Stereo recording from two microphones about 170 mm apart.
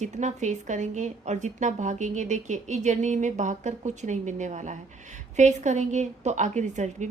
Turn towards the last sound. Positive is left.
turn(degrees=-45)  # may be behind; listen again after turning